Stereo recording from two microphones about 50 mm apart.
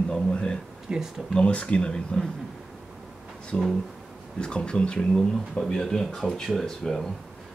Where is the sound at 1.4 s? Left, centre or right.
Left.